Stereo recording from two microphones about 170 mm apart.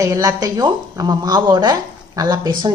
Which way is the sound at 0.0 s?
20° right (ahead or behind).